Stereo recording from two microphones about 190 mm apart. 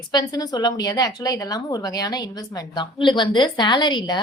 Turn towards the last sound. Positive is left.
turn(degrees=20)  # may be behind; listen again after turning